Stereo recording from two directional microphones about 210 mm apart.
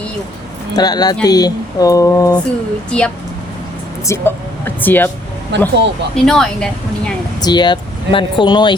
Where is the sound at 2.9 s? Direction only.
5° left (ahead or behind).